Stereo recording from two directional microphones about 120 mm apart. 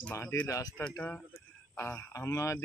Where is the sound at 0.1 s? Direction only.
25° left (ahead or behind).